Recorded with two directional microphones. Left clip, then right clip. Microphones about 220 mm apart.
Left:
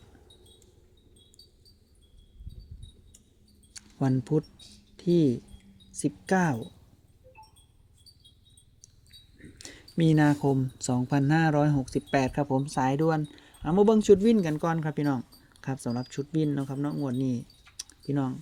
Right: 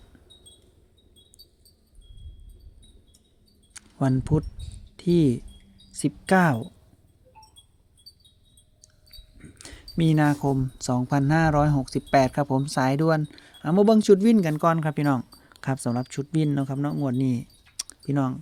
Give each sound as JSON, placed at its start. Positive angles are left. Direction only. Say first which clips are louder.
{"t": 3.7, "sound": "a sound", "louder": "right 3 dB", "side_deg": -20}
{"t": 4.9, "sound": "speech", "louder": "right 2 dB", "side_deg": -25}
{"t": 9.4, "sound": "speech", "louder": "right 1 dB", "side_deg": -15}